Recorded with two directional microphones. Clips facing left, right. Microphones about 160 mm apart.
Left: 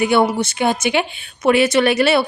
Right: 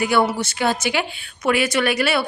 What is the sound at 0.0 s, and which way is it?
A woman's voice, 20° left (ahead or behind).